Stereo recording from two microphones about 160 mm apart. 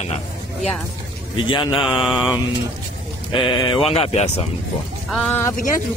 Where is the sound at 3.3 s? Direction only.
30° left (ahead or behind).